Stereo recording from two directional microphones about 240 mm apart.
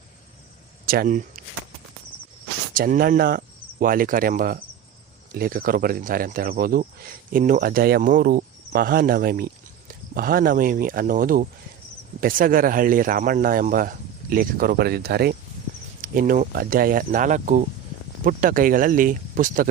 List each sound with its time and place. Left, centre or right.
0.9 s speech: right
2.7 s speech: right